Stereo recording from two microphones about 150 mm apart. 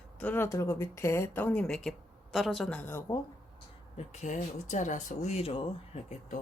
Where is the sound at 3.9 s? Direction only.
50° left (ahead or behind).